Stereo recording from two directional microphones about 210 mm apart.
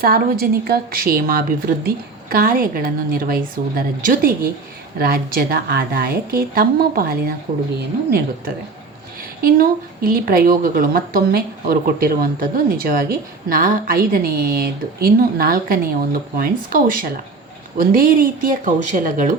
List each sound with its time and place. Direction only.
0.0 s a woman's voice: 45° right (ahead or behind)